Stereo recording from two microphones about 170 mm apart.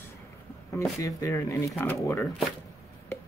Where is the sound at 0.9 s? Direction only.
20° left (ahead or behind).